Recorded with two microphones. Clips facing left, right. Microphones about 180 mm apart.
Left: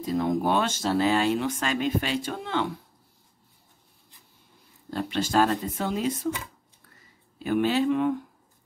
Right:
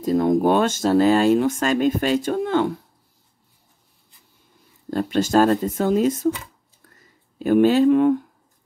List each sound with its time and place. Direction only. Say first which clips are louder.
0.0 s speech: right 7 dB; 45° right (ahead or behind)
4.9 s speech: right 6 dB; 45° right (ahead or behind)
7.3 s speech: right 8 dB; 45° right (ahead or behind)